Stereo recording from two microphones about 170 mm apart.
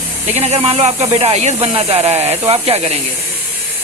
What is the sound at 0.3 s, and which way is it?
Speech, 40° right (ahead or behind).